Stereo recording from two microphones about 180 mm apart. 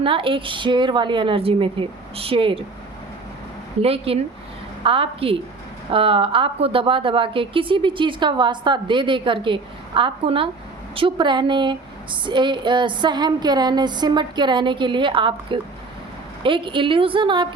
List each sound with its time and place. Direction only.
0.0 s a woman's voice: 30° right (ahead or behind)
3.8 s a woman's voice: 35° right (ahead or behind)